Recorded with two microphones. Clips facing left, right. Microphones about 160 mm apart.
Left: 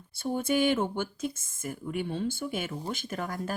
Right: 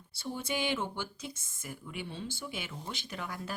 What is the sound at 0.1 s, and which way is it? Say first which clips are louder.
Speech: left 8 dB; 50° left (ahead or behind).